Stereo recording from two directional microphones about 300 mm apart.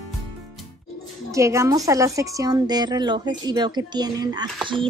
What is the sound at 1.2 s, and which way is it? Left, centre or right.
A woman's voice, centre.